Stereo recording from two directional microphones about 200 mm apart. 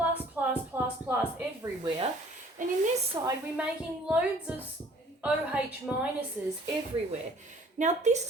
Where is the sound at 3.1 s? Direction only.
25° right (ahead or behind).